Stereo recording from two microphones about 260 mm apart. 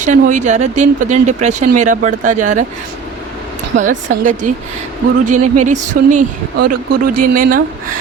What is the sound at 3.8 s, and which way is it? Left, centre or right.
Speech, right.